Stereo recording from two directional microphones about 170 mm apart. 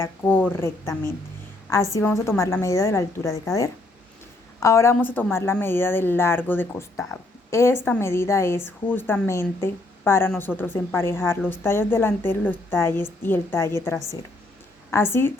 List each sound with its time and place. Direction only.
0.0 s a woman's voice: 10° left (ahead or behind)
14.8 s a woman's voice: 15° left (ahead or behind)